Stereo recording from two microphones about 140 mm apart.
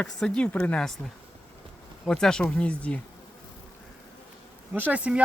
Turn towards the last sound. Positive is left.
turn(degrees=-10)  # may be behind; listen again after turning